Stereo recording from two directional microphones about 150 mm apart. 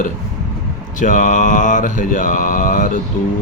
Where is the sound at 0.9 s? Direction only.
60° left (ahead or behind).